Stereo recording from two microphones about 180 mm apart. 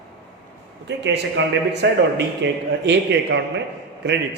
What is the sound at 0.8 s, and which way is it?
A man's voice, 75° right (ahead or behind).